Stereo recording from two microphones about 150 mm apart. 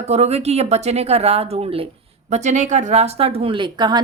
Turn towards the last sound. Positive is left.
turn(degrees=-30)  # may be behind; listen again after turning